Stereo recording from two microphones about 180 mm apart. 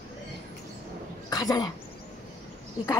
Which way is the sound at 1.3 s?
20° left (ahead or behind).